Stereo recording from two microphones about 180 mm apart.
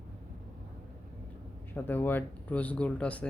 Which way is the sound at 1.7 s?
10° left (ahead or behind).